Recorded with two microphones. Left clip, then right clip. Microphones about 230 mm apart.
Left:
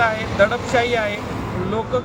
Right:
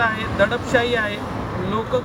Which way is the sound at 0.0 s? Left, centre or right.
Centre.